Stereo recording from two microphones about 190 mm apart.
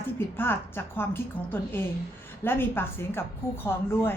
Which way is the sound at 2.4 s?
10° left (ahead or behind).